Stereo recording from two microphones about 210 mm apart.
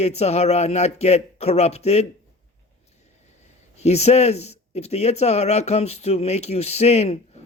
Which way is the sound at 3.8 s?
30° left (ahead or behind).